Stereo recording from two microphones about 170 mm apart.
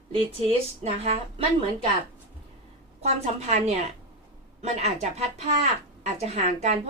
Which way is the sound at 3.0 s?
40° right (ahead or behind).